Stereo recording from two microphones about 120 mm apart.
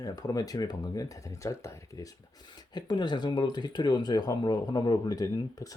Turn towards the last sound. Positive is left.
turn(degrees=30)  # may be behind; listen again after turning